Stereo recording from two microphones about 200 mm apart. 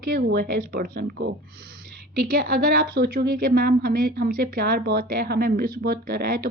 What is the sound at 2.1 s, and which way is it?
A woman's voice, 45° right (ahead or behind).